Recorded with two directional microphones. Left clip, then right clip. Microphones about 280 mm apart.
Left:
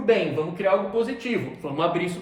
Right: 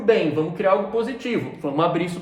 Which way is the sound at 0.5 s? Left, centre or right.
Centre.